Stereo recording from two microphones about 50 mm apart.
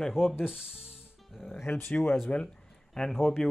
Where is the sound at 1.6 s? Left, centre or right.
Left.